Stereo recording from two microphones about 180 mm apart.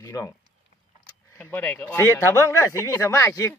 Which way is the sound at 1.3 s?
10° left (ahead or behind).